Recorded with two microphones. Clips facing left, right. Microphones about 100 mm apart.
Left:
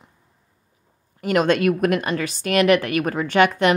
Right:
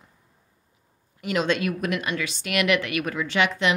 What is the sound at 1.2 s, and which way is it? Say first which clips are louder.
A woman's voice: left 6 dB; 50° left (ahead or behind).